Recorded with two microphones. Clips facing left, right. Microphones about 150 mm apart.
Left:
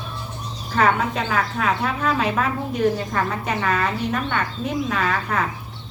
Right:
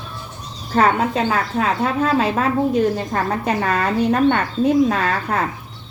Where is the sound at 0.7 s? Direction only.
30° right (ahead or behind).